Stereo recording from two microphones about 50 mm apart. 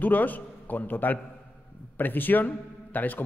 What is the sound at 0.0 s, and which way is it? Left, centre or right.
A man's voice, left.